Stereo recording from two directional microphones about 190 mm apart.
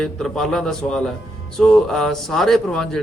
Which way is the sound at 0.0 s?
Centre (ahead or behind).